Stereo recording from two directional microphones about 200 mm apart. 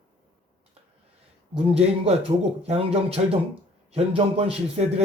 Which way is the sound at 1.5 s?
30° right (ahead or behind).